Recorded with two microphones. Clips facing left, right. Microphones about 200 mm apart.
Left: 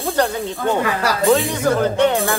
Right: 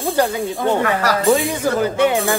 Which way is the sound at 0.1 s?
10° right (ahead or behind).